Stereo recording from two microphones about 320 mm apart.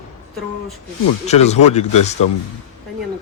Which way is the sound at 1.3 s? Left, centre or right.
Centre.